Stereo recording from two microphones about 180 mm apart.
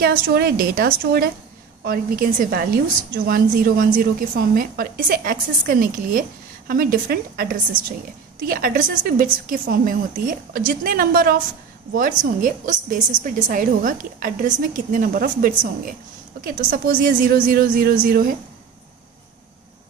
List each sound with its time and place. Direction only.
0.0 s a woman's voice: 60° right (ahead or behind)